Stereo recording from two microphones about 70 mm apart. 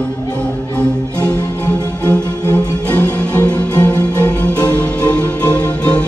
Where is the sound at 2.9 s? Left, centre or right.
Centre.